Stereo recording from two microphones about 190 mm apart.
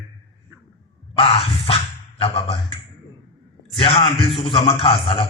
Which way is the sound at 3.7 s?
30° left (ahead or behind).